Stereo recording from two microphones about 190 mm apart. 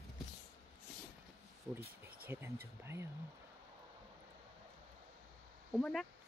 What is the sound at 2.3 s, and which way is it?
Speech, 10° right (ahead or behind).